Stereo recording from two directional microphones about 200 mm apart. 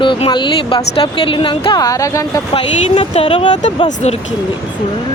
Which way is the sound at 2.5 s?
30° left (ahead or behind).